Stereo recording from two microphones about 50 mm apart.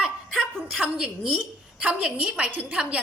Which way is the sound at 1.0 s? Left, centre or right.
Right.